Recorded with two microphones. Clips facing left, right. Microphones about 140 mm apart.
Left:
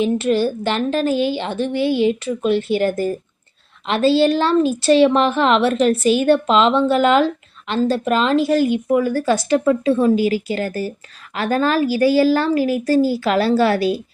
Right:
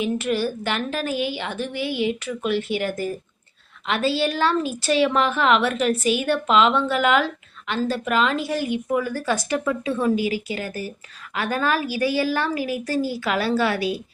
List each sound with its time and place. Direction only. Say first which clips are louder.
0.0 s a woman's voice: left 6 dB; 30° left (ahead or behind)